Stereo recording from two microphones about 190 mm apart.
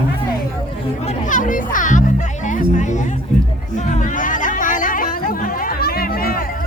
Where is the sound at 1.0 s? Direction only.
45° left (ahead or behind).